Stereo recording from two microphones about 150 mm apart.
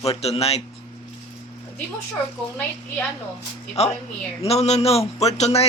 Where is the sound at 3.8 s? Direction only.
45° left (ahead or behind).